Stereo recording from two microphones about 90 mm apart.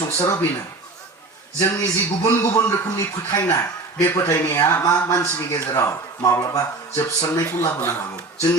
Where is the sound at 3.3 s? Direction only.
35° left (ahead or behind).